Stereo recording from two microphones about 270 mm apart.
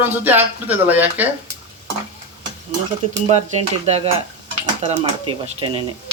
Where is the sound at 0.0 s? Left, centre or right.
Centre.